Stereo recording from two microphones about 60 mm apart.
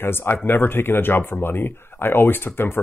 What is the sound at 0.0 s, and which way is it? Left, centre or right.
Speech, left.